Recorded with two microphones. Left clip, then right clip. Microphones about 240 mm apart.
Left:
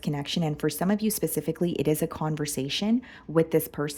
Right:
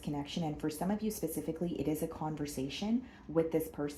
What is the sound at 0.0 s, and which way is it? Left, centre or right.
A woman's voice, left.